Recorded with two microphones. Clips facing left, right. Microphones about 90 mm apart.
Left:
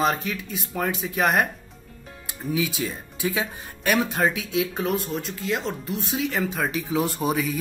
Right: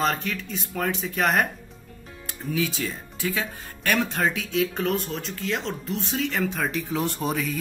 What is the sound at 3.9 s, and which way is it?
Speech, 5° left (ahead or behind).